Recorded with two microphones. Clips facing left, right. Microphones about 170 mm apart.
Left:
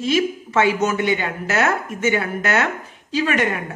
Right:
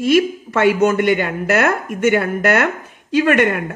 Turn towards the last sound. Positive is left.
turn(degrees=-60)  # may be behind; listen again after turning